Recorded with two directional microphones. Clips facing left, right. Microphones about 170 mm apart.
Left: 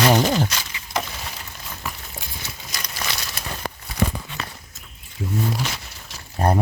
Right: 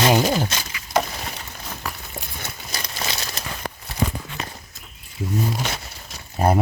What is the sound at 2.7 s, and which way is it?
Crumpling, 25° right (ahead or behind).